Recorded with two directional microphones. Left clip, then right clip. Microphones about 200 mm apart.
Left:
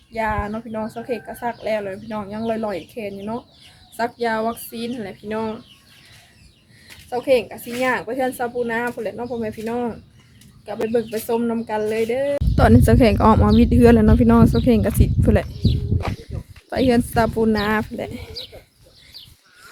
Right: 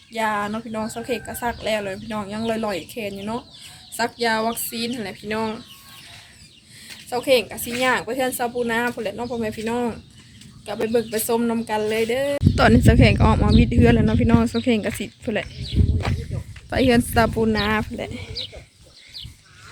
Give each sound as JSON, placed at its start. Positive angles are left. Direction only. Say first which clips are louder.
{"t": 0.1, "sound": "speech", "louder": "even", "side_deg": 0}
{"t": 6.8, "sound": "speech", "louder": "left 1 dB", "side_deg": 0}
{"t": 12.5, "sound": "speech", "louder": "left 1 dB", "side_deg": 15}
{"t": 16.6, "sound": "a woman's voice", "louder": "even", "side_deg": 10}